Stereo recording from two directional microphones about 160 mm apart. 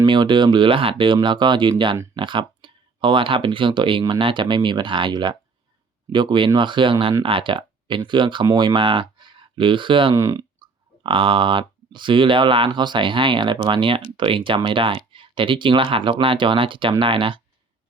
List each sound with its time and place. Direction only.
0.0 s speech: 30° right (ahead or behind)
10.2 s a sound: 20° right (ahead or behind)
11.0 s speech: 30° right (ahead or behind)